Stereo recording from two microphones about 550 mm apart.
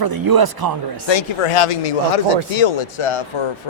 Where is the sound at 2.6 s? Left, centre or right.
Left.